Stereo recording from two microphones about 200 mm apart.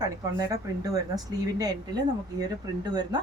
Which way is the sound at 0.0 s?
15° right (ahead or behind).